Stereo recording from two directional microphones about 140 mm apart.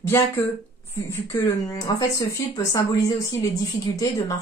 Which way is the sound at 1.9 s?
30° left (ahead or behind).